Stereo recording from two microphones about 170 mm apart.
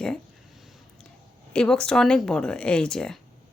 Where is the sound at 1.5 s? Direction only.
5° left (ahead or behind).